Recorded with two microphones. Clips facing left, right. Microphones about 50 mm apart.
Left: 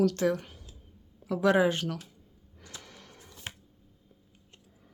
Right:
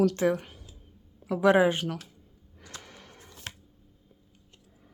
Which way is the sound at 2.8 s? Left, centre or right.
Right.